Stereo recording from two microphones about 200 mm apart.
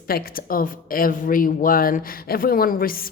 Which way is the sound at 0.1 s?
45° left (ahead or behind).